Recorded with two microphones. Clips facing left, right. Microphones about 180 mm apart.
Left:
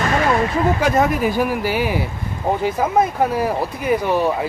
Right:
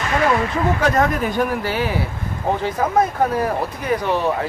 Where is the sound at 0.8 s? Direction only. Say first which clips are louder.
Even; 10° left (ahead or behind).